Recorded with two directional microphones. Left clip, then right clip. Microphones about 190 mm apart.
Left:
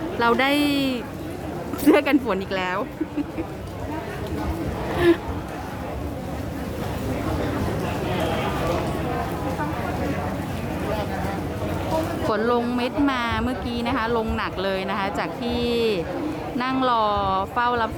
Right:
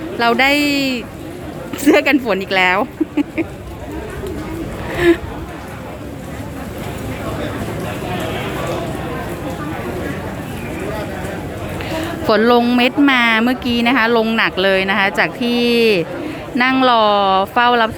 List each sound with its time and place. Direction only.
0.2 s speech: 5° right (ahead or behind)
4.9 s speech: 5° right (ahead or behind)
12.3 s speech: 15° right (ahead or behind)